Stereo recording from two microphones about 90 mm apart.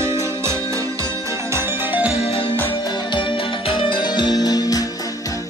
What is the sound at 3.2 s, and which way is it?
Music, 65° left (ahead or behind).